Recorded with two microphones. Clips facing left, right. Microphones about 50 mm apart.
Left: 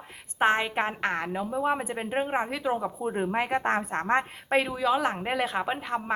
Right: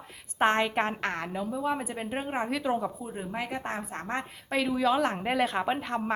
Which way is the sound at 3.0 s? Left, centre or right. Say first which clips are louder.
Left 7 dB; left.